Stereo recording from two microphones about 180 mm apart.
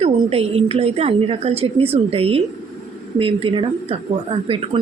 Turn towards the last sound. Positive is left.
turn(degrees=-30)  # may be behind; listen again after turning